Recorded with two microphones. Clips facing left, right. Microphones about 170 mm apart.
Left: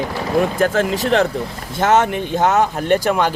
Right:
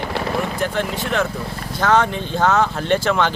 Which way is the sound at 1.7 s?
20° left (ahead or behind).